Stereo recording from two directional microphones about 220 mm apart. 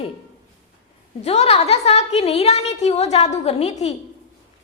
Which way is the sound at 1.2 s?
30° left (ahead or behind).